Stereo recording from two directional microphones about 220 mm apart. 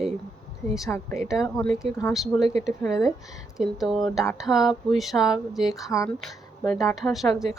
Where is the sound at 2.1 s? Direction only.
Centre (ahead or behind).